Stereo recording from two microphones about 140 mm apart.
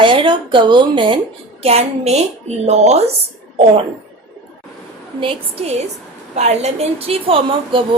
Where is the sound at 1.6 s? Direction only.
50° right (ahead or behind).